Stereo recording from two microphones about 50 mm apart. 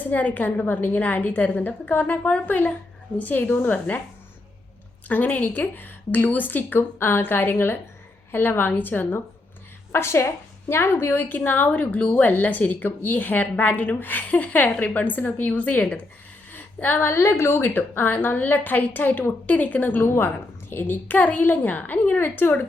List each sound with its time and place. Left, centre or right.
0.0 s a woman's voice: left
5.0 s a woman's voice: left
9.9 s a woman's voice: left
16.5 s a sound: left
17.1 s a woman's voice: left